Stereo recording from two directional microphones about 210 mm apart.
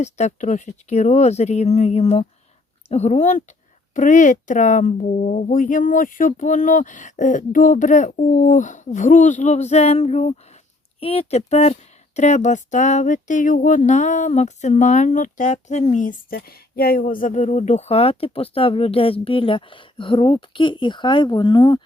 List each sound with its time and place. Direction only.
0.0 s speech: 35° left (ahead or behind)